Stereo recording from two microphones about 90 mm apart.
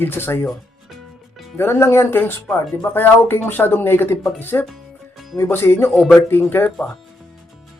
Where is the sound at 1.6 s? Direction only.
30° left (ahead or behind).